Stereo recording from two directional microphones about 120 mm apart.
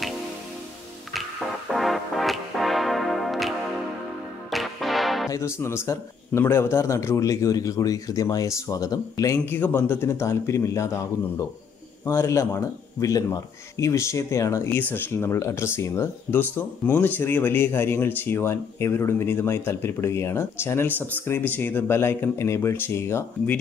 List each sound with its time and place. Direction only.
1.7 s music: centre (ahead or behind)
5.3 s speech: 25° left (ahead or behind)